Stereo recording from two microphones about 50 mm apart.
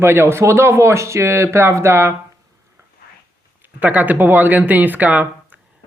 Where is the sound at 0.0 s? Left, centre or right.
Right.